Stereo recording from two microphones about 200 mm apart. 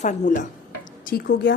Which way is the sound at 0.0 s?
40° left (ahead or behind).